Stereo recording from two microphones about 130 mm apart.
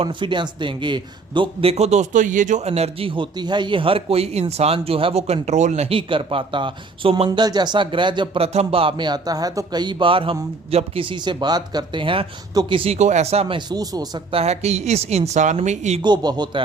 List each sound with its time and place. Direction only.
0.0 s speech: 40° right (ahead or behind)
1.7 s speech: 60° right (ahead or behind); by 2.6 s 80° right
2.6 s speech: 55° right (ahead or behind)
6.0 s speech: 40° right (ahead or behind)
7.3 s speech: 30° right (ahead or behind); by 13.6 s 50° right (ahead or behind)
13.7 s speech: 30° right (ahead or behind)
14.3 s speech: 55° right (ahead or behind)
16.0 s speech: 35° right (ahead or behind)